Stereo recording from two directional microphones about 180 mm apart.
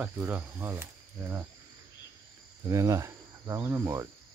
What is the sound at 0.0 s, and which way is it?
Speech, 10° right (ahead or behind).